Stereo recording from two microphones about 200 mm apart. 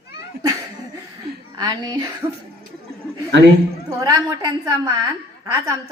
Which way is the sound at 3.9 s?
15° right (ahead or behind).